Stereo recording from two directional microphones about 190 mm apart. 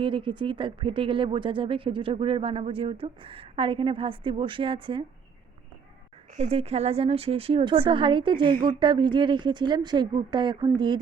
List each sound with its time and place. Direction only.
0.0 s speech: 25° right (ahead or behind)
6.3 s speech: 35° right (ahead or behind)